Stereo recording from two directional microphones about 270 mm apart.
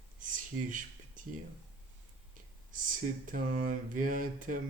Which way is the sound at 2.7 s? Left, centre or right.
Right.